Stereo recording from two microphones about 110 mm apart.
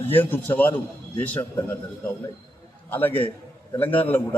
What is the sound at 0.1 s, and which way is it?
A man's voice, 20° left (ahead or behind).